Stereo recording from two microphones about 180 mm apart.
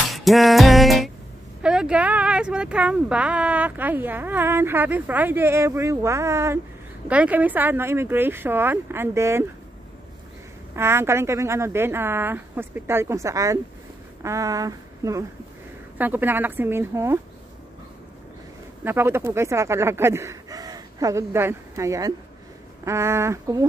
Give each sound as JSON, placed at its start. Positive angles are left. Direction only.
{"t": 0.1, "sound": "music", "side_deg": 0}
{"t": 1.6, "sound": "speech", "side_deg": -5}
{"t": 10.8, "sound": "speech", "side_deg": -15}
{"t": 18.9, "sound": "speech", "side_deg": -15}